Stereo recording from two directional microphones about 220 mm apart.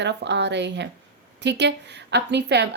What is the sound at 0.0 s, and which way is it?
A woman's voice, 50° right (ahead or behind).